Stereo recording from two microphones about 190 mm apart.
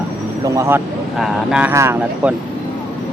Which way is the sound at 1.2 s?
Centre (ahead or behind).